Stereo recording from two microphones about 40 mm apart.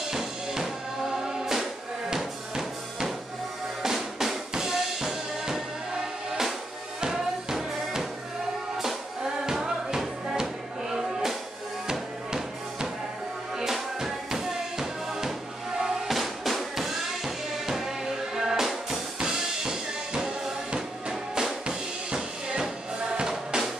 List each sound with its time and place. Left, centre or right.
0.0 s drum: centre
1.1 s music: centre
3.8 s drum: centre
7.0 s music: centre
13.6 s music: centre
19.1 s music: centre